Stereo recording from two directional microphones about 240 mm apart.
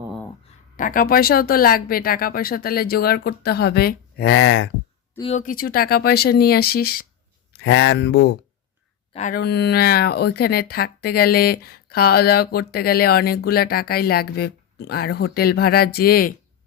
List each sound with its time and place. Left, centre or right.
0.8 s speech: left
5.2 s speech: left
9.1 s speech: left